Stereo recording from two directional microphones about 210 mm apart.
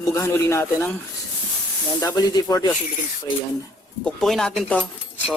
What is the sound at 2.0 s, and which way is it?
Speech, 20° left (ahead or behind).